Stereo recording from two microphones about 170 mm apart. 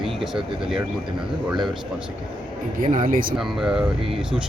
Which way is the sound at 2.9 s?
55° right (ahead or behind).